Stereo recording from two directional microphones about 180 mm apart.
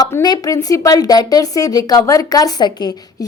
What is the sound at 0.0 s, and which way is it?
A woman's voice, 20° left (ahead or behind).